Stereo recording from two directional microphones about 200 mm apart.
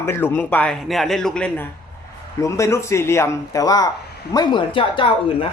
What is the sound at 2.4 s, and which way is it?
Speech, 15° left (ahead or behind).